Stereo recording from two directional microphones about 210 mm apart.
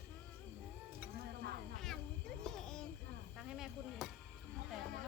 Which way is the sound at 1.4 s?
50° right (ahead or behind).